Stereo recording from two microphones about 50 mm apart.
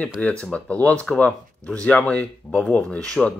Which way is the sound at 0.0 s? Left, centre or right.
Left.